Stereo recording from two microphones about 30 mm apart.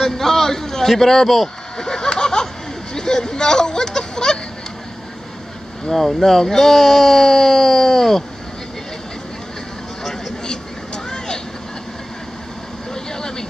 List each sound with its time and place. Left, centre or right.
0.0 s a man's voice: centre
1.8 s a sound: centre
5.9 s speech: centre
11.1 s vehicle: left
12.9 s vehicle: left